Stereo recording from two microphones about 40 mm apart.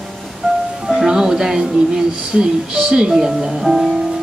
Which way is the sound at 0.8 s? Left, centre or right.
Centre.